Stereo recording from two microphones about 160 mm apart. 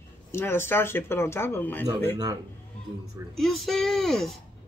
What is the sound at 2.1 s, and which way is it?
Speech, 25° right (ahead or behind).